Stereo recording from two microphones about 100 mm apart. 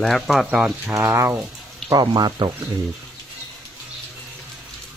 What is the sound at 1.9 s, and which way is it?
Speech, 45° right (ahead or behind).